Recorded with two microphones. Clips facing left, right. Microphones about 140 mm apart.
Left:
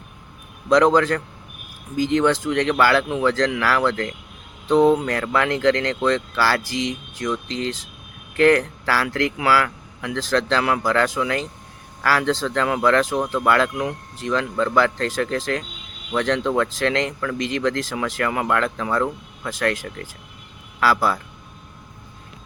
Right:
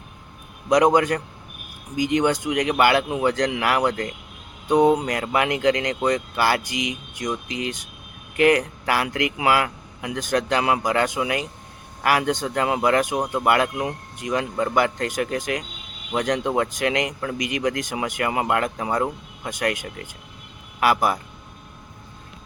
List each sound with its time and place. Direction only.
0.7 s a man's voice: 15° right (ahead or behind)